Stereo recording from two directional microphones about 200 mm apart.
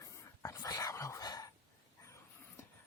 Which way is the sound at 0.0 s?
15° left (ahead or behind).